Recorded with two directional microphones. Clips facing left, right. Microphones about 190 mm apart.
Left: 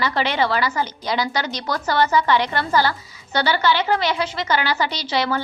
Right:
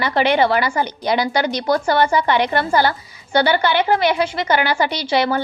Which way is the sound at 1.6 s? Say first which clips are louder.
Right 3 dB; 30° right (ahead or behind).